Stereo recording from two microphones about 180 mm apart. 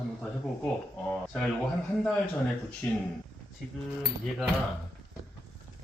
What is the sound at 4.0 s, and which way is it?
Speech, centre (ahead or behind).